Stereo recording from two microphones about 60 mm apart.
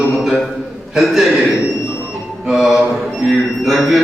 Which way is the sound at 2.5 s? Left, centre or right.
Centre.